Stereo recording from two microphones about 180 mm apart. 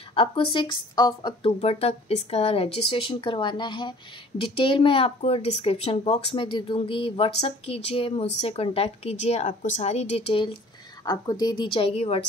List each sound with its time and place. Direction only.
0.1 s a woman's voice: 30° left (ahead or behind)